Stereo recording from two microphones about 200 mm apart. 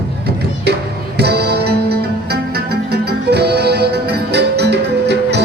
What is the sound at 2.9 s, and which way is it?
Music, 55° right (ahead or behind).